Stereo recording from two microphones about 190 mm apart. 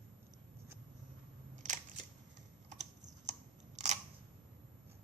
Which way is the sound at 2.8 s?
40° right (ahead or behind).